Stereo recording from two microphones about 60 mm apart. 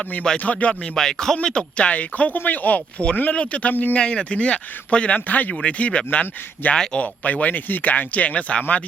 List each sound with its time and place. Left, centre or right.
0.0 s speech: left
0.7 s speech: centre; by 6.7 s left
6.7 s speech: centre
7.0 s speech: left